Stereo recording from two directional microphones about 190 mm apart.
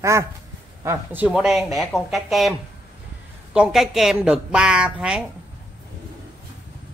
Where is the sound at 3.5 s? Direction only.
Centre (ahead or behind).